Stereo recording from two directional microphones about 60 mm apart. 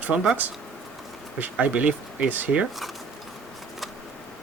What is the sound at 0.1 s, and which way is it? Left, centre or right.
Speech, centre.